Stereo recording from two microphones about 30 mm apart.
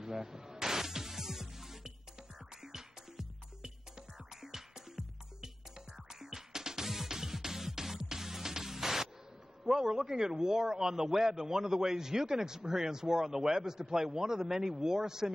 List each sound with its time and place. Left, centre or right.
0.0 s music: centre
4.3 s music: centre
9.7 s a man's voice: centre